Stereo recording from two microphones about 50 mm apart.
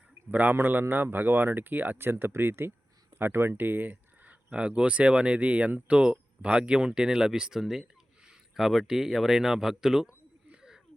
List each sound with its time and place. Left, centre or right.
0.3 s speech: right
2.0 s speech: right
4.5 s speech: right
10.5 s a sound: centre